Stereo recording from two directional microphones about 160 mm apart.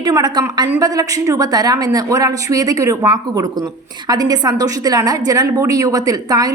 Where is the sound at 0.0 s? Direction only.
25° right (ahead or behind).